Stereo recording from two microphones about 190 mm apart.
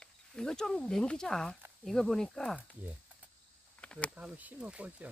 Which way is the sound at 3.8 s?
5° left (ahead or behind).